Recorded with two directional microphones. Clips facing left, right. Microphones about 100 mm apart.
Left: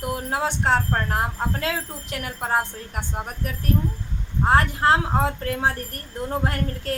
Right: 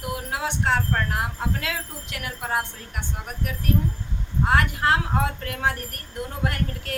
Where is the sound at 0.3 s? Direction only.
35° left (ahead or behind).